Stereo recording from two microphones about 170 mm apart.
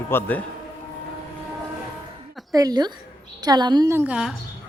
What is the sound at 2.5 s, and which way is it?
A woman's voice, 20° right (ahead or behind).